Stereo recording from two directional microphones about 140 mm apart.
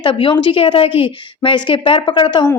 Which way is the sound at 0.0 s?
35° left (ahead or behind).